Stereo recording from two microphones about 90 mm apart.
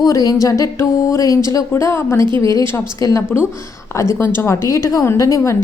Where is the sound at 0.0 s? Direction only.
40° left (ahead or behind).